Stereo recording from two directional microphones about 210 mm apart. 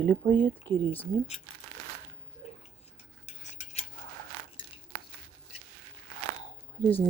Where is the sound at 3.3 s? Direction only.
35° left (ahead or behind).